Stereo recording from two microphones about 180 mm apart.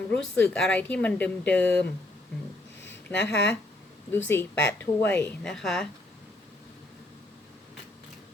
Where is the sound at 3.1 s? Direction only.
75° left (ahead or behind).